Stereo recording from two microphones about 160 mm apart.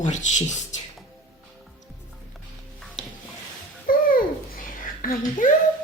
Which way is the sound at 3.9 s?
60° left (ahead or behind).